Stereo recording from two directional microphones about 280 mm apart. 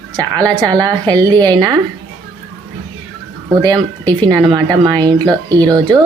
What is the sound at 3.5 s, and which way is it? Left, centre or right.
Speech, centre.